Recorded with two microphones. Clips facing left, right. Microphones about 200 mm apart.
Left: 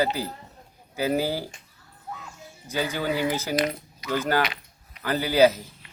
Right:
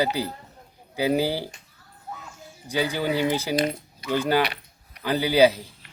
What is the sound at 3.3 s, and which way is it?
Speech, 15° right (ahead or behind).